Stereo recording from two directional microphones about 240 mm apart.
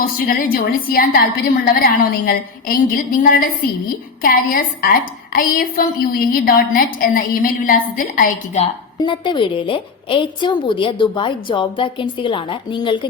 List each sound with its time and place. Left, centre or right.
0.3 s a woman's voice: left
9.0 s a woman's voice: centre